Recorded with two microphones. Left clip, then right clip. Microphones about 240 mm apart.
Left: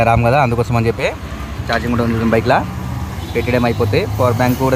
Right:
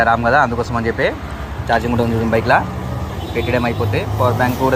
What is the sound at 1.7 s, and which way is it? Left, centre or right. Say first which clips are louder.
Speech: right 1 dB; centre.